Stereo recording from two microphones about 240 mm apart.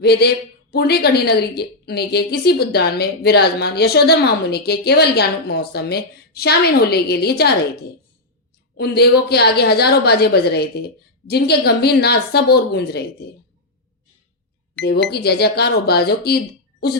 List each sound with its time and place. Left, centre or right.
0.0 s a woman's voice: left
14.8 s speech: centre
15.1 s a woman's voice: left